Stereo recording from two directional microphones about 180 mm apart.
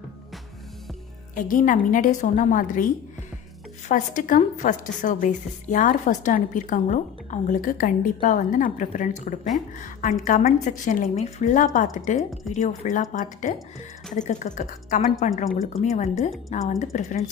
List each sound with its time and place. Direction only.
1.3 s a woman's voice: 50° left (ahead or behind)
3.9 s a woman's voice: 45° left (ahead or behind)